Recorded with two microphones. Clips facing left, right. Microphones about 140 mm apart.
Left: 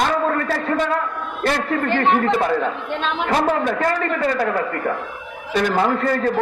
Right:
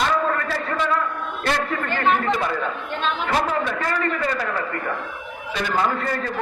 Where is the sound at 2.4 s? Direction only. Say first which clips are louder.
Left 5 dB; 45° left (ahead or behind).